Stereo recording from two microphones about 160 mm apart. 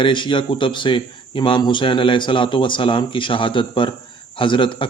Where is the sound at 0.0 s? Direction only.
30° left (ahead or behind).